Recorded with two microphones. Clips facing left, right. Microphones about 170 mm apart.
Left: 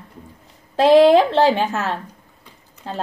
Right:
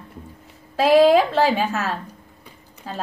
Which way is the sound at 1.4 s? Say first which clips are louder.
Left 3 dB; 15° left (ahead or behind).